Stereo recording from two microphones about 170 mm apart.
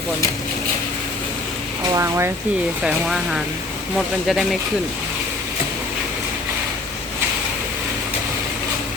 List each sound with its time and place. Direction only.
1.9 s speech: 15° right (ahead or behind)
2.8 s speech: centre (ahead or behind)